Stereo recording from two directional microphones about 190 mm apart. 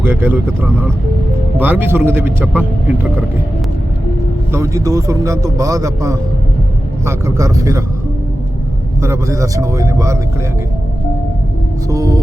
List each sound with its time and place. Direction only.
0.0 s speech: 10° right (ahead or behind)
1.5 s speech: 10° right (ahead or behind)
4.5 s speech: 15° right (ahead or behind)
9.0 s speech: 15° right (ahead or behind)
11.9 s speech: 15° right (ahead or behind)